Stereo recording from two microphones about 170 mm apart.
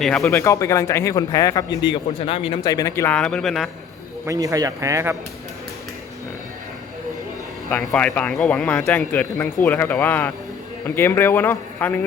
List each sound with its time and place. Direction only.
0.0 s speech: centre (ahead or behind)
0.3 s speech: 15° left (ahead or behind); by 3.7 s centre (ahead or behind)
4.3 s speech: 20° right (ahead or behind)
7.9 s speech: 5° left (ahead or behind)